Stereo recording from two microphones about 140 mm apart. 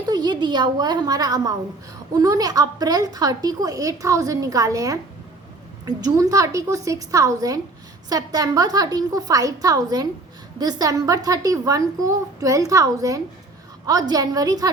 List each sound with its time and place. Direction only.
0.0 s a woman's voice: 30° right (ahead or behind)